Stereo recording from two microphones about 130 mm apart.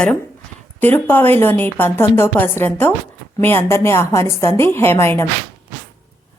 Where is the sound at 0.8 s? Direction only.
15° left (ahead or behind).